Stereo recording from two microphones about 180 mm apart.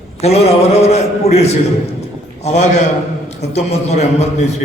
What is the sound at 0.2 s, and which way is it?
A man's voice, 35° left (ahead or behind).